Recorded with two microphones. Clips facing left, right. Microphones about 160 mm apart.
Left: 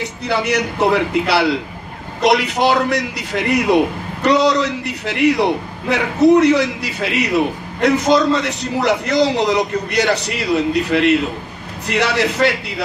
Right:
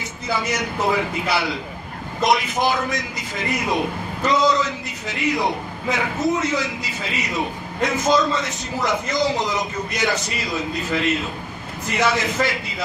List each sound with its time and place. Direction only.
0.3 s a man's voice: 70° left (ahead or behind)